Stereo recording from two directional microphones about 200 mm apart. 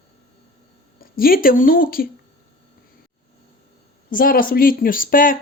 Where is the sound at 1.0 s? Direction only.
45° left (ahead or behind).